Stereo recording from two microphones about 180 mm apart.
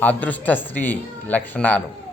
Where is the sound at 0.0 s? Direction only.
10° left (ahead or behind).